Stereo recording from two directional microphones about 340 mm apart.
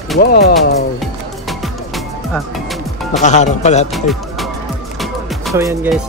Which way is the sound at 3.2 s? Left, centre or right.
Centre.